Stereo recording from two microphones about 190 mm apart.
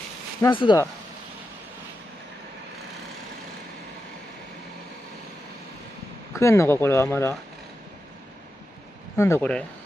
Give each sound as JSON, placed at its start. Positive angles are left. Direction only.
{"t": 0.4, "sound": "speech", "side_deg": 25}
{"t": 6.3, "sound": "speech", "side_deg": 15}
{"t": 9.1, "sound": "speech", "side_deg": 15}